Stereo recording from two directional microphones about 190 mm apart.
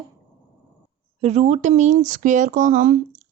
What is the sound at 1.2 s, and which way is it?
Speech, 35° right (ahead or behind).